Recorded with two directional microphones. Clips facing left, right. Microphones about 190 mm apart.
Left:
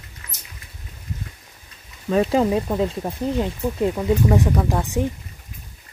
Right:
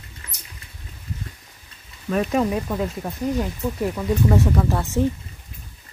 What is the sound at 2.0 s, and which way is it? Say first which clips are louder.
Speech: left 3 dB; 25° left (ahead or behind).